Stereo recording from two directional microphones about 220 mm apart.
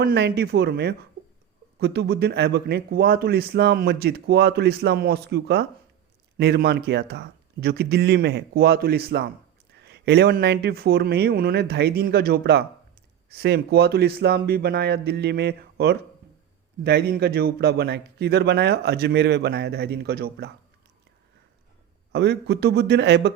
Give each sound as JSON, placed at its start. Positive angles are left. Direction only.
{"t": 0.0, "sound": "a man's voice", "side_deg": -45}
{"t": 22.1, "sound": "a man's voice", "side_deg": -50}